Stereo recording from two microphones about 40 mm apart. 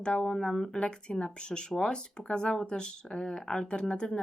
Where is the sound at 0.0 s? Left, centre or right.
Left.